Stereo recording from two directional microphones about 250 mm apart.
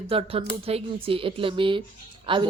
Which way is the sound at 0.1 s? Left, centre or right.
Right.